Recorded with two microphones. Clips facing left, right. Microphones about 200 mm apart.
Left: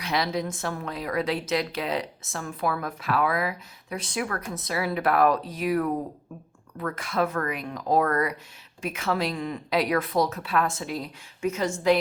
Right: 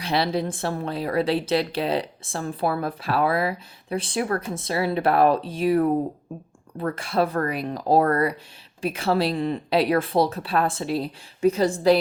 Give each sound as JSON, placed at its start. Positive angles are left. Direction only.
{"t": 0.0, "sound": "a woman's voice", "side_deg": -30}